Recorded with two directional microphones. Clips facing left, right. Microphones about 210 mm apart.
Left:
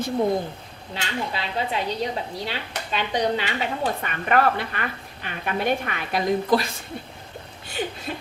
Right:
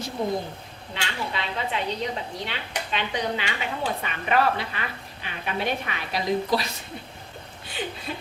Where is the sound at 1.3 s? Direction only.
35° left (ahead or behind).